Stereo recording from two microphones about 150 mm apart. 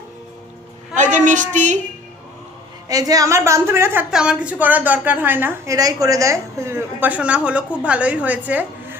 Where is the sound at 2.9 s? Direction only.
25° right (ahead or behind).